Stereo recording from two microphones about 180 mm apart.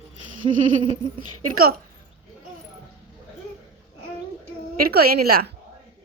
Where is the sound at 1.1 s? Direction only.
55° right (ahead or behind).